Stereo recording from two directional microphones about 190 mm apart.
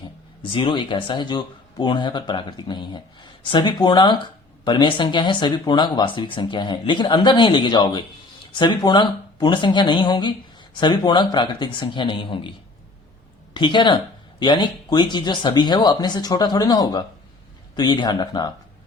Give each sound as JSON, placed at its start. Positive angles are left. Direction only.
{"t": 0.5, "sound": "speech", "side_deg": 25}
{"t": 13.5, "sound": "speech", "side_deg": 25}